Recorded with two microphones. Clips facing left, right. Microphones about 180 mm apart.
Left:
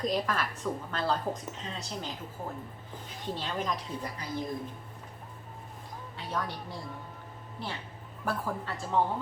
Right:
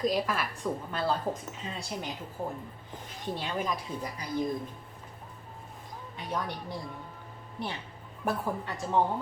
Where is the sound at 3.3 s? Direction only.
10° right (ahead or behind).